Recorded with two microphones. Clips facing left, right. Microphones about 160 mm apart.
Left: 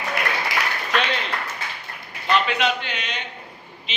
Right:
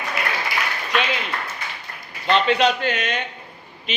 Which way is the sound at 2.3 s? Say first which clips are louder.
Right 3 dB; 35° right (ahead or behind).